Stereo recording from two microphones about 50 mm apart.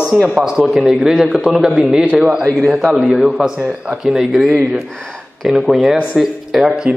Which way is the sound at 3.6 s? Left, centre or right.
Right.